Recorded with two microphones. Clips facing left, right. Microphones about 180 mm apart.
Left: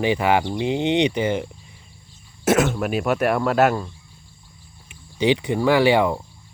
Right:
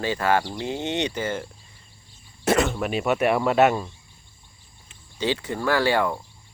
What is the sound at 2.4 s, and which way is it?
Speech, centre (ahead or behind).